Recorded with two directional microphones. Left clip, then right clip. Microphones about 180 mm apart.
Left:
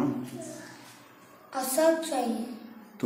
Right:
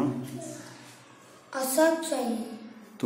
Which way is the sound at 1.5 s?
20° right (ahead or behind).